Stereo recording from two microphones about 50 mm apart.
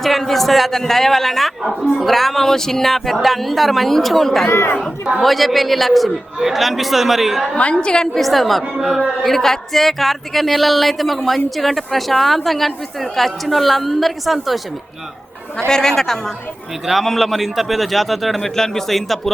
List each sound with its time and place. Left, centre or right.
0.0 s speech: centre
4.4 s speech: left
5.2 s speech: centre
7.6 s a woman's voice: left
8.1 s speech: centre
9.3 s speech: centre
15.7 s speech: centre